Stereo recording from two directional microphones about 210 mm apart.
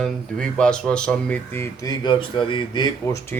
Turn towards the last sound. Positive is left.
turn(degrees=10)  # may be behind; listen again after turning